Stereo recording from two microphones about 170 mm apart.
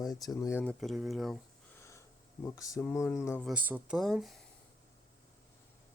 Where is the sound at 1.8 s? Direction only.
15° left (ahead or behind).